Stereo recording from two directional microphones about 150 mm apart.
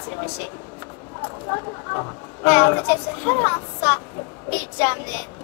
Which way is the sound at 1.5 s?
20° left (ahead or behind).